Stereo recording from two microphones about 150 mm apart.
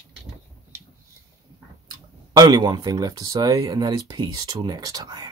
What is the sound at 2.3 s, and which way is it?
Speech, 30° right (ahead or behind).